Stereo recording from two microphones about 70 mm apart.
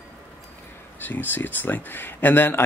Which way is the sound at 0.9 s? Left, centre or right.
Left.